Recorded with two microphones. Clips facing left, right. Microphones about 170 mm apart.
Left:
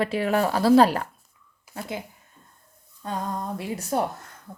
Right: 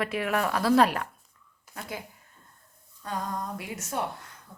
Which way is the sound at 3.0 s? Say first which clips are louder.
Left 3 dB; 25° left (ahead or behind).